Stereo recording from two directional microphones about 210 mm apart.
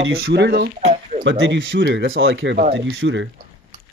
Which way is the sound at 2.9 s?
70° right (ahead or behind).